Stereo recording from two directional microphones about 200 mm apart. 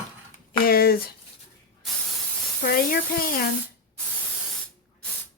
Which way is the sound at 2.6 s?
45° left (ahead or behind).